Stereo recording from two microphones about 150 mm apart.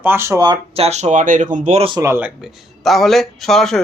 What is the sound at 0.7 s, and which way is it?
Speech, 45° right (ahead or behind).